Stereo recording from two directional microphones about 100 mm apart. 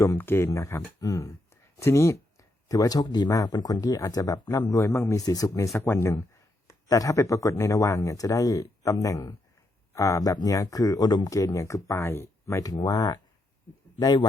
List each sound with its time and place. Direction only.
0.2 s speech: 20° left (ahead or behind); by 14.3 s 40° left (ahead or behind)